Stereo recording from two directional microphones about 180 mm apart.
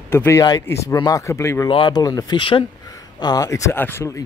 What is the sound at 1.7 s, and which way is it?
Speech, 25° left (ahead or behind).